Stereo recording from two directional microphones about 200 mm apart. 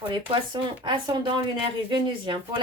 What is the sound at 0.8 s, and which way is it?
A woman's voice, 25° right (ahead or behind).